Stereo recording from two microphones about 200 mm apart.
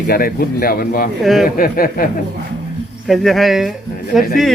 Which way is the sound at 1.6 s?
45° left (ahead or behind).